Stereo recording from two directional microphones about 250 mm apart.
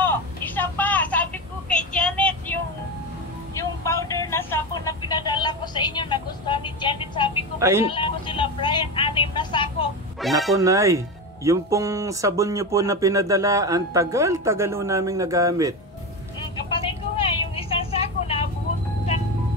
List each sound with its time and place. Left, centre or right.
0.0 s vehicle: centre
7.5 s speech: centre
7.8 s music: left
10.2 s speech: centre
10.6 s speech: centre
16.7 s vehicle: left